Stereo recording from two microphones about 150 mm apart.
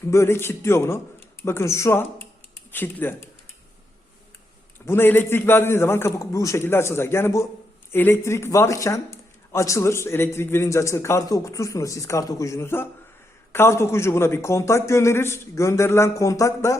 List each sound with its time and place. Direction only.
0.1 s a man's voice: 15° left (ahead or behind)
4.9 s a man's voice: 15° left (ahead or behind)